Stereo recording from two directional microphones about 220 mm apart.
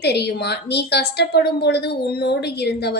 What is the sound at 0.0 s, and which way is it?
A woman's voice, 50° left (ahead or behind).